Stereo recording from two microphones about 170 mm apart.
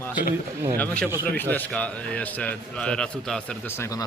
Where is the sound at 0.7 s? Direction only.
10° left (ahead or behind).